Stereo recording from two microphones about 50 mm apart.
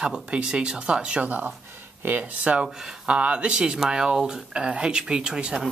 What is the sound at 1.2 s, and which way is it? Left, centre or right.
Speech, right.